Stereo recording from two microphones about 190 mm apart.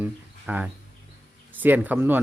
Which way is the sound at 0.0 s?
10° right (ahead or behind).